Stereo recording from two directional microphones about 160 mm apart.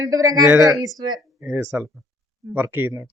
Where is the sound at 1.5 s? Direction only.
10° right (ahead or behind).